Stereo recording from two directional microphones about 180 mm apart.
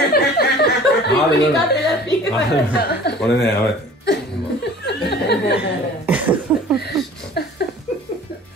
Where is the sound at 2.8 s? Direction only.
65° left (ahead or behind).